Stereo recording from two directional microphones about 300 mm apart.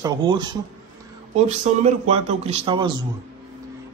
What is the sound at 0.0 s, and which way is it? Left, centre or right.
Speech, centre.